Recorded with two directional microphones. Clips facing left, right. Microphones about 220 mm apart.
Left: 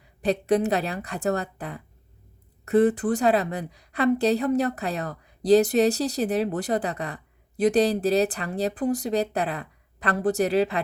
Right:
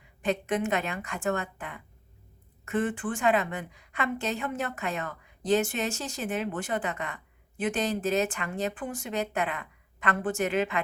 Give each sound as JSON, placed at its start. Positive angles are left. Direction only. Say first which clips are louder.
{"t": 0.2, "sound": "a woman's voice", "louder": "left 6 dB", "side_deg": 35}